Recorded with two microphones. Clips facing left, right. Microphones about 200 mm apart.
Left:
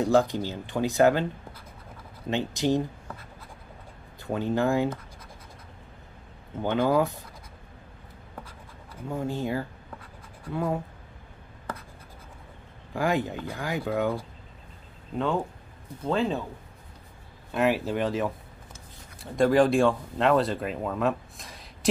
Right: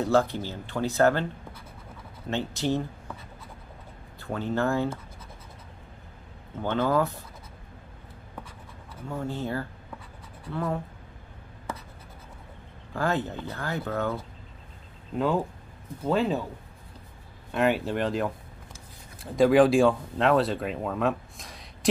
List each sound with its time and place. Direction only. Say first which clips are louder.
0.0 s speech: left 1 dB; 15° left (ahead or behind)
2.2 s speech: left 2 dB; 15° left (ahead or behind)
4.2 s speech: left 2 dB; 15° left (ahead or behind)
6.6 s speech: left 1 dB; 15° left (ahead or behind)
9.1 s speech: left 2 dB; 15° left (ahead or behind)
12.9 s speech: left 1 dB; 15° left (ahead or behind)
15.1 s speech: right 2 dB; 5° right (ahead or behind)
17.5 s speech: even; centre (ahead or behind)